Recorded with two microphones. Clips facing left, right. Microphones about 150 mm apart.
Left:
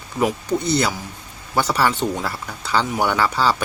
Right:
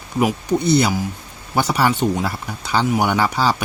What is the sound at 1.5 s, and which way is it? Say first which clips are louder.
Speech: right 1 dB; 15° right (ahead or behind).